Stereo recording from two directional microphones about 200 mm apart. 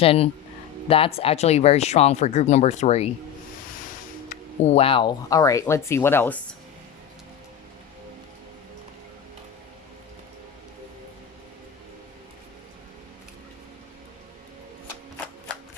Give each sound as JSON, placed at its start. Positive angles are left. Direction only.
{"t": 0.0, "sound": "speech", "side_deg": 30}
{"t": 4.3, "sound": "speech", "side_deg": 35}